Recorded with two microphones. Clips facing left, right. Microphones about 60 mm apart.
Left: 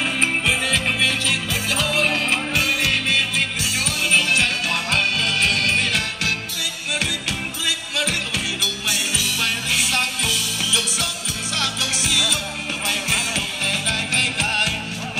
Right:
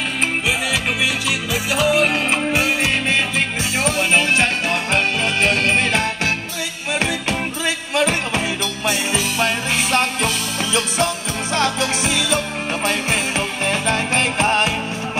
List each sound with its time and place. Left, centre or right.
1.0 s music: centre; by 12.4 s right
13.7 s music: right